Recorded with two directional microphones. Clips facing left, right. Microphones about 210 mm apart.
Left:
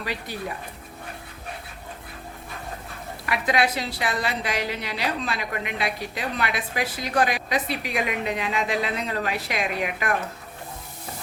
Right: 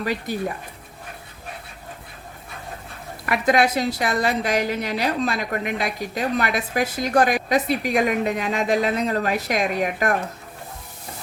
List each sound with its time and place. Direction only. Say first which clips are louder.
0.0 s a woman's voice: right 6 dB; 45° right (ahead or behind)
3.2 s a woman's voice: right 5 dB; 45° right (ahead or behind)